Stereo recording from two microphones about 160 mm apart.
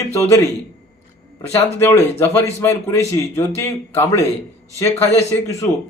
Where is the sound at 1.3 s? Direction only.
20° left (ahead or behind).